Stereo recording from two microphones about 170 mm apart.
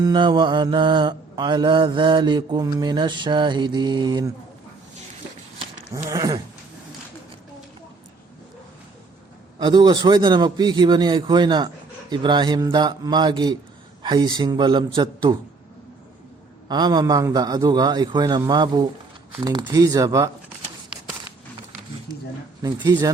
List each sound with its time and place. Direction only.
0.0 s mantra: 25° right (ahead or behind)
6.1 s mantra: 20° right (ahead or behind)
9.6 s mantra: 25° right (ahead or behind)
16.6 s mantra: 25° right (ahead or behind)
22.6 s mantra: 25° right (ahead or behind)